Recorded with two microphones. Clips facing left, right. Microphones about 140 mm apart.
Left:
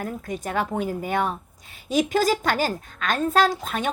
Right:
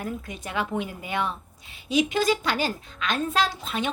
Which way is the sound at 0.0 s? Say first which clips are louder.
Left 3 dB; 45° left (ahead or behind).